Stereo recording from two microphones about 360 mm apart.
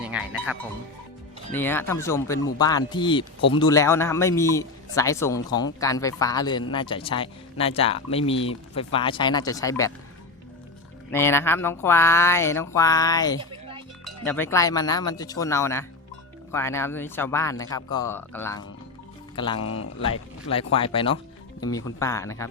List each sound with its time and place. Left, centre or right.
0.0 s music: centre
1.5 s a man's voice: centre
11.1 s a man's voice: centre
13.4 s music: centre
14.0 s a man's voice: centre
19.5 s speech: left
20.1 s a man's voice: centre